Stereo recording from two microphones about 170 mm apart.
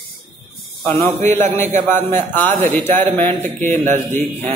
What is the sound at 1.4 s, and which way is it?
Speech, 45° right (ahead or behind).